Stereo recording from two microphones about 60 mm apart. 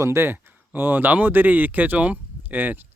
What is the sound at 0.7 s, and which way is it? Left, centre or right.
Speech, right.